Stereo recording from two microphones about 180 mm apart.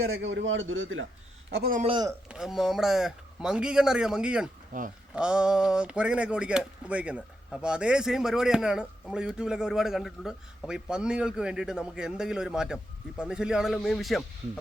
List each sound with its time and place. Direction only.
0.0 s a man's voice: 75° right (ahead or behind); by 1.0 s 90° right
1.5 s a man's voice: 60° right (ahead or behind)
1.8 s speech: 30° right (ahead or behind)
2.3 s speech: 5° right (ahead or behind)
4.7 s speech: 45° right (ahead or behind)
5.1 s speech: 5° right (ahead or behind)